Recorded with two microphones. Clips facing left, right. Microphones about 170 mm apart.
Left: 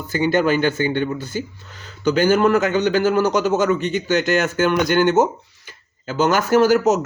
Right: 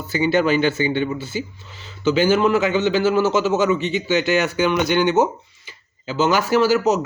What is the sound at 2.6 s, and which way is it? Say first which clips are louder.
Speech: left 1 dB; 45° left (ahead or behind).